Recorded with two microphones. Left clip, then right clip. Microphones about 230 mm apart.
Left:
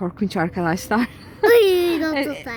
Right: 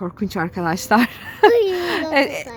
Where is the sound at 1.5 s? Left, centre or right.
Left.